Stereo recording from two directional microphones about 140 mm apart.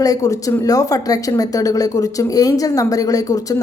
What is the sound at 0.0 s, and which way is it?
A woman's voice, 25° left (ahead or behind).